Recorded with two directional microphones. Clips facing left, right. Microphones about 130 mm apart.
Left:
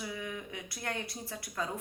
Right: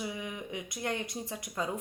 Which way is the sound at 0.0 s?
15° right (ahead or behind).